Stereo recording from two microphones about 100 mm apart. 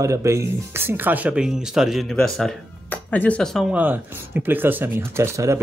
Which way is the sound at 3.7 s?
15° right (ahead or behind).